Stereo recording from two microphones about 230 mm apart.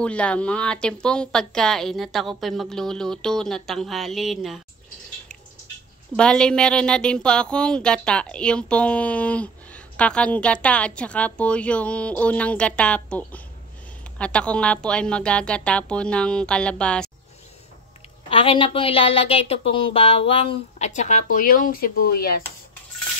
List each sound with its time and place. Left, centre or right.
0.0 s a woman's voice: centre
6.1 s a woman's voice: centre
18.3 s a woman's voice: left